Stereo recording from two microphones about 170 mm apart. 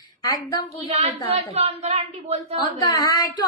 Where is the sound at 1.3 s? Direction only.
40° right (ahead or behind).